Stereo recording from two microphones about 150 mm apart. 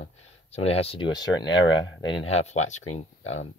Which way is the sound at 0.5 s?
40° left (ahead or behind).